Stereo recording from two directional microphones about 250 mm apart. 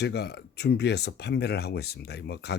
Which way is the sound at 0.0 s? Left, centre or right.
Left.